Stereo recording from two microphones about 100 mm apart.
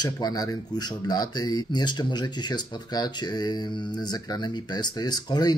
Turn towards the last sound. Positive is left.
turn(degrees=40)  # may be behind; listen again after turning